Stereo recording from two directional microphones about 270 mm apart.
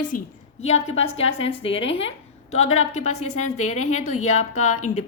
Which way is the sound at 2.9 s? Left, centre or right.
Left.